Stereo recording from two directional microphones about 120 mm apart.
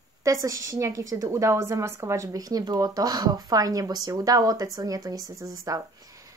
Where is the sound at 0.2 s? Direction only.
25° right (ahead or behind).